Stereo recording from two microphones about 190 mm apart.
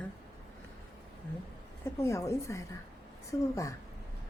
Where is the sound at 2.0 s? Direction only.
15° left (ahead or behind).